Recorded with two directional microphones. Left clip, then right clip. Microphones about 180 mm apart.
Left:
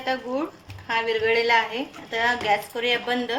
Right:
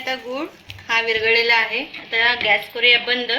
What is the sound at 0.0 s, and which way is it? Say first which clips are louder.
A woman's voice: right 1 dB; 25° left (ahead or behind).